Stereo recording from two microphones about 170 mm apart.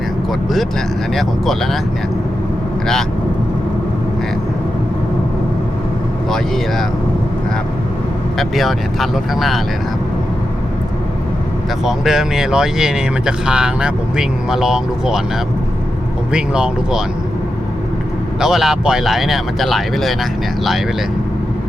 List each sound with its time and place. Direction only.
1.1 s speech: centre (ahead or behind)
8.4 s speech: centre (ahead or behind)
11.9 s speech: centre (ahead or behind)
16.3 s speech: 5° right (ahead or behind)
18.3 s speech: 5° right (ahead or behind)